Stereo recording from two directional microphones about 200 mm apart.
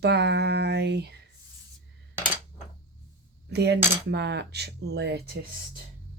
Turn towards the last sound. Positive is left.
turn(degrees=-55)  # may be behind; listen again after turning